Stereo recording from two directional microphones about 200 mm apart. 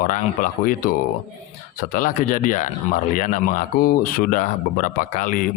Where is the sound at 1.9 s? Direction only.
45° left (ahead or behind).